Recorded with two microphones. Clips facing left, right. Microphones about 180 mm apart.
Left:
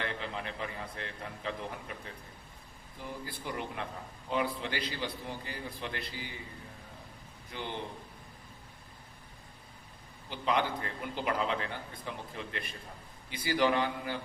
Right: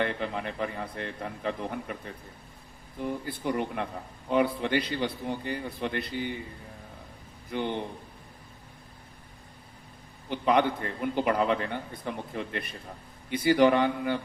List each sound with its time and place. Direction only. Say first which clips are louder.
0.0 s a man's voice: right 7 dB; 55° right (ahead or behind)
3.0 s a man's voice: right 9 dB; 60° right (ahead or behind)
7.5 s a man's voice: right 9 dB; 55° right (ahead or behind)
10.2 s a man's voice: right 7 dB; 55° right (ahead or behind)